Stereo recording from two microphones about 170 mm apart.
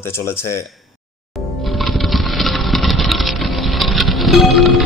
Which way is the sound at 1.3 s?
Centre (ahead or behind).